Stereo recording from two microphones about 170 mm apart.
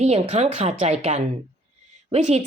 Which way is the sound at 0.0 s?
40° right (ahead or behind).